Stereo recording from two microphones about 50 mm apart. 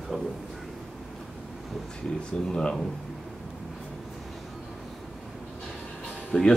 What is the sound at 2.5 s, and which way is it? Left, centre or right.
Speech, centre.